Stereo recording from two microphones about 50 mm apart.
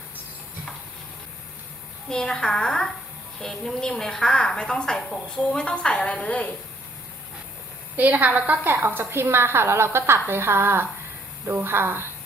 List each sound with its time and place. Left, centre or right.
2.0 s a woman's voice: centre
7.9 s a woman's voice: right
9.0 s a woman's voice: right